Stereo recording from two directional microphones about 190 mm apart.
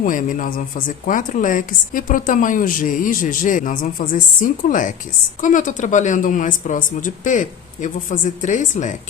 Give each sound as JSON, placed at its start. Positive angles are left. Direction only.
{"t": 0.0, "sound": "a woman's voice", "side_deg": 45}